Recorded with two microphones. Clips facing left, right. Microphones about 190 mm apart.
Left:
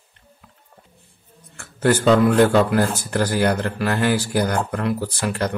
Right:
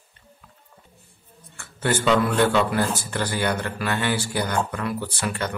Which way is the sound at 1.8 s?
40° left (ahead or behind).